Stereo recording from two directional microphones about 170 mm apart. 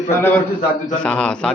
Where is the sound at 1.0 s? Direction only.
5° left (ahead or behind).